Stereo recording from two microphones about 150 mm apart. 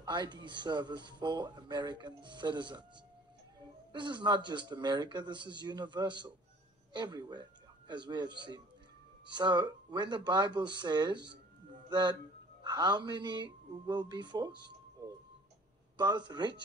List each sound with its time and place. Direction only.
0.0 s speech: 30° right (ahead or behind)
3.9 s a man's voice: 30° right (ahead or behind)